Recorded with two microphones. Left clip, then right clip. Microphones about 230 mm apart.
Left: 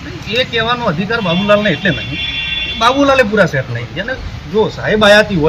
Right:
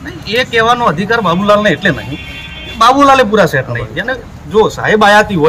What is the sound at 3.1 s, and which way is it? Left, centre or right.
A man's voice, centre.